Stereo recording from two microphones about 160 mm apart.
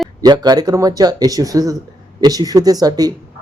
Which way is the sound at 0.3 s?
25° right (ahead or behind).